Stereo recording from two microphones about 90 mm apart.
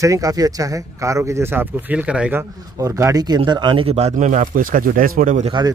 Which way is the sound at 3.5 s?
55° right (ahead or behind).